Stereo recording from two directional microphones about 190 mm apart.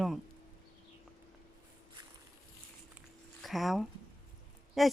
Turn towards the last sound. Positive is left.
turn(degrees=0)  # may be behind; listen again after turning